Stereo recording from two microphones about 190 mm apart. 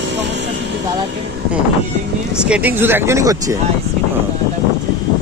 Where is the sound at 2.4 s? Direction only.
5° right (ahead or behind).